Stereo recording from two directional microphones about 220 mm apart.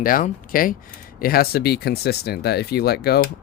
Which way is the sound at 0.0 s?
40° left (ahead or behind).